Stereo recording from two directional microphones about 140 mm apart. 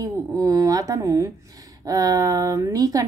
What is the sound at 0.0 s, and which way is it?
A woman's voice, 25° right (ahead or behind).